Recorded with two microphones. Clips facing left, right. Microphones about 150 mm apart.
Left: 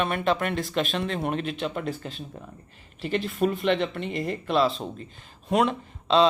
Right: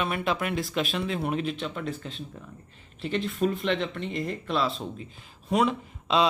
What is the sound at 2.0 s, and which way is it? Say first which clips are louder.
Speech: left 2 dB; 50° left (ahead or behind).